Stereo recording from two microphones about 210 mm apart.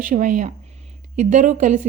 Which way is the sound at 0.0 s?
35° right (ahead or behind).